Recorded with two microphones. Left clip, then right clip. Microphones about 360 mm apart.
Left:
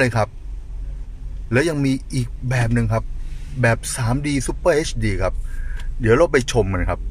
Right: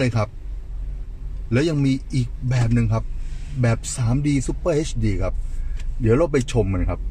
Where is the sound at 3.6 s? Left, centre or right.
Left.